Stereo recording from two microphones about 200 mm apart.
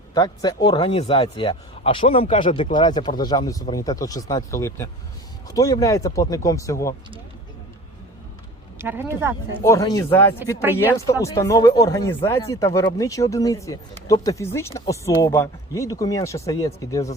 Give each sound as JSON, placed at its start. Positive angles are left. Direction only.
{"t": 0.1, "sound": "speech", "side_deg": 20}
{"t": 8.8, "sound": "speech", "side_deg": -10}
{"t": 9.6, "sound": "speech", "side_deg": 15}